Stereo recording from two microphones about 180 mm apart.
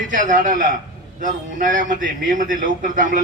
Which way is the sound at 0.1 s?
45° right (ahead or behind).